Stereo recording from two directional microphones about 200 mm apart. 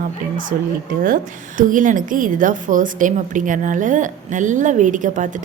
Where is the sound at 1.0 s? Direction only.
40° right (ahead or behind).